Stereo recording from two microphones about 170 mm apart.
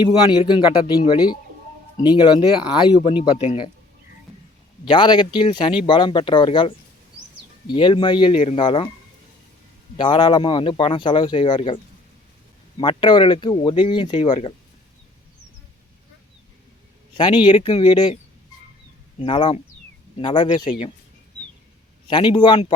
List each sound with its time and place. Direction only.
0.0 s speech: 25° left (ahead or behind)
4.9 s speech: 25° left (ahead or behind)
8.4 s speech: 40° left (ahead or behind)
8.6 s speech: 30° left (ahead or behind)
10.0 s speech: 25° left (ahead or behind)
17.2 s speech: 25° left (ahead or behind)
19.2 s speech: 30° left (ahead or behind)
22.0 s a man's voice: 30° left (ahead or behind)